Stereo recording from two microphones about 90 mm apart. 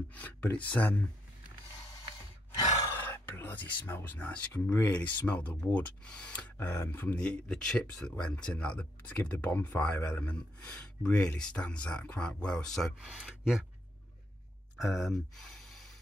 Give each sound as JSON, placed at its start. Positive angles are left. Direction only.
{"t": 0.1, "sound": "speech", "side_deg": 15}
{"t": 3.0, "sound": "a sound", "side_deg": 25}
{"t": 4.3, "sound": "speech", "side_deg": 15}
{"t": 7.2, "sound": "speech", "side_deg": 10}
{"t": 13.0, "sound": "speech", "side_deg": -10}
{"t": 14.8, "sound": "speech", "side_deg": 0}